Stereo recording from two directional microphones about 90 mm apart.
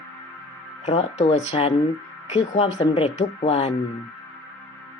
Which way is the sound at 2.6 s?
90° left.